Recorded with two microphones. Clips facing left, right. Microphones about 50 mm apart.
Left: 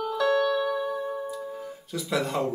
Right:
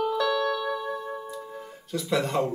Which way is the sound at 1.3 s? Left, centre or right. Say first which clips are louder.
Left 3 dB; centre.